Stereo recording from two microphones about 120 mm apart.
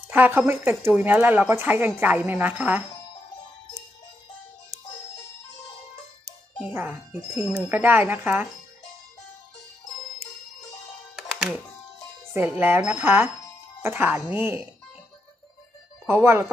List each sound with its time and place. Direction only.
0.1 s a woman's voice: 15° right (ahead or behind)
6.6 s music: 10° right (ahead or behind)
7.6 s a woman's voice: 15° right (ahead or behind)
11.2 s music: 5° right (ahead or behind)
12.5 s a woman's voice: 15° right (ahead or behind)
16.0 s speech: 20° right (ahead or behind)